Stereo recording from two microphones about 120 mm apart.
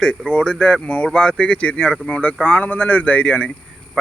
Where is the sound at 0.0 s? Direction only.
10° left (ahead or behind).